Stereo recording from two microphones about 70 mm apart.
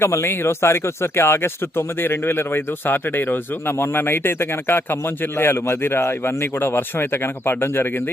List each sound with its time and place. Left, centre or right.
0.0 s speech: left